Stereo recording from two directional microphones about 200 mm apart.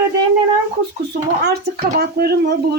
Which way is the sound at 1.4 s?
55° right (ahead or behind).